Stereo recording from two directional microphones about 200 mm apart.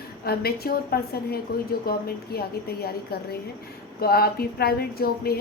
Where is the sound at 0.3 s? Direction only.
50° left (ahead or behind).